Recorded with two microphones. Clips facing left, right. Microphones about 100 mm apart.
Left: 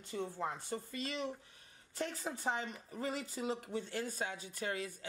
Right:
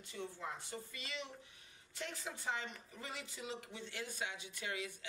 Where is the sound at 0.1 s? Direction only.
40° left (ahead or behind).